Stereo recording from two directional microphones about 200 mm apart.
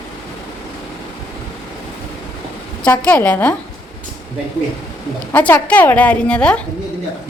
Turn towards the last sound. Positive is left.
turn(degrees=5)  # may be behind; listen again after turning